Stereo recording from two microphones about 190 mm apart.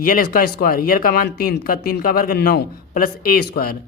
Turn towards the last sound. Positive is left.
turn(degrees=50)  # may be behind; listen again after turning